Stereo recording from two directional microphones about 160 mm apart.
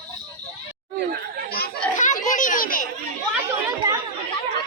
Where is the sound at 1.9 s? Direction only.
50° left (ahead or behind).